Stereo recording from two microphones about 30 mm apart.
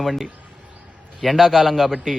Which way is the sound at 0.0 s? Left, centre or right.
Centre.